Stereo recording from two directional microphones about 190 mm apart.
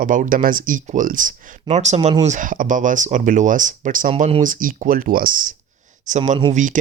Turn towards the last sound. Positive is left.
turn(degrees=-40)  # may be behind; listen again after turning